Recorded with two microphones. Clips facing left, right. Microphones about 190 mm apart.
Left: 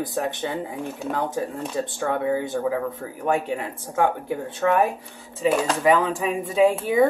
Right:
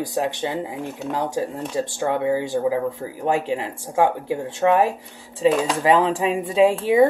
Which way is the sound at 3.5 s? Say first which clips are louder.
Right 3 dB; 25° right (ahead or behind).